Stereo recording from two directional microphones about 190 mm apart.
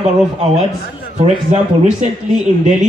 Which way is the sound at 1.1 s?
40° right (ahead or behind).